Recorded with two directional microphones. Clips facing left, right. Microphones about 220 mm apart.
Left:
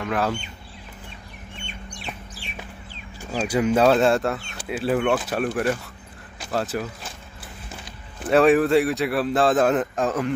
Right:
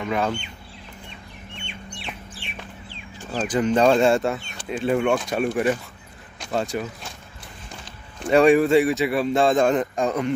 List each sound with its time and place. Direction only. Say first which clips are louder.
0.0 s speech: even; centre (ahead or behind)
1.6 s chicken: right 1 dB; 40° left (ahead or behind)
3.2 s speech: even; 10° left (ahead or behind)
8.2 s speech: right 1 dB; centre (ahead or behind)